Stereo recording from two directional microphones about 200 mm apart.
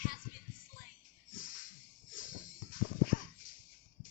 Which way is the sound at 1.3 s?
40° left (ahead or behind).